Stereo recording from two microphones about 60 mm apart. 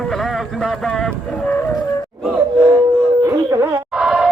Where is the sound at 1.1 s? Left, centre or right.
Centre.